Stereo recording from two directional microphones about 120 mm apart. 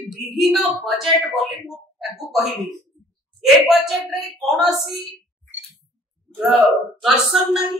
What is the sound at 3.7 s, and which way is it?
Speech, centre (ahead or behind).